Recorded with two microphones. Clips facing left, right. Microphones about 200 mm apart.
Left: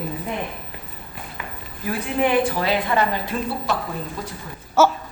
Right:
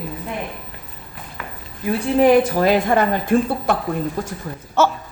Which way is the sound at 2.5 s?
45° right (ahead or behind).